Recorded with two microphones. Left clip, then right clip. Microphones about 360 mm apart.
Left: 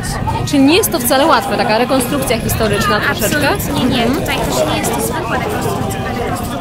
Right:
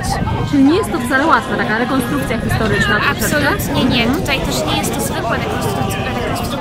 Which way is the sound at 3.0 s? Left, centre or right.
Centre.